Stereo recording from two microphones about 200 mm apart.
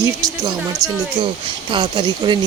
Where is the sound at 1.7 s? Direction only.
25° right (ahead or behind).